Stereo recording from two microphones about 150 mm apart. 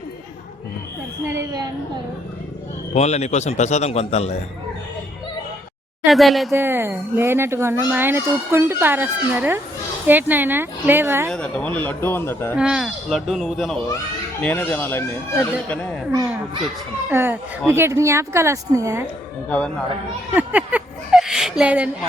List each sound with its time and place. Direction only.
1.2 s a woman's voice: 20° right (ahead or behind)
2.9 s a man's voice: 45° left (ahead or behind)
6.1 s speech: centre (ahead or behind)
6.5 s a child's voice: 15° right (ahead or behind)
11.3 s speech: 5° left (ahead or behind)
12.5 s speech: 5° right (ahead or behind)
14.4 s speech: 15° left (ahead or behind)
17.1 s a child's voice: 15° right (ahead or behind)
19.5 s speech: 10° left (ahead or behind)
20.3 s a sound: 10° right (ahead or behind)